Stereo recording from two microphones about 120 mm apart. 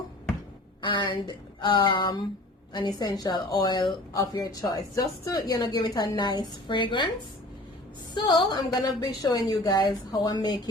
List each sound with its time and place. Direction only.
0.8 s a woman's voice: 40° left (ahead or behind)
8.1 s a woman's voice: 40° left (ahead or behind)